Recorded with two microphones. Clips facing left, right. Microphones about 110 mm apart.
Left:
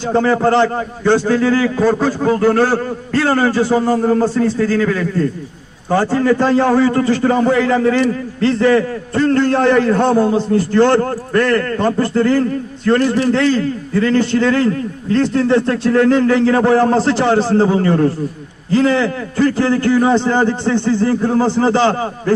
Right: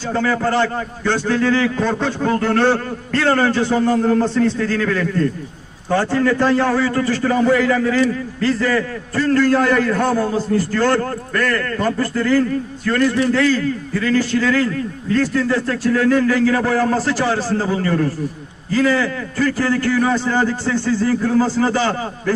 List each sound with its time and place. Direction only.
0.1 s a man's voice: 20° left (ahead or behind)